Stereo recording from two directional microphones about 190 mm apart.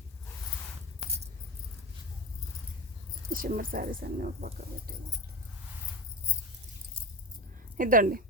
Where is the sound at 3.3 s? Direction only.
45° right (ahead or behind).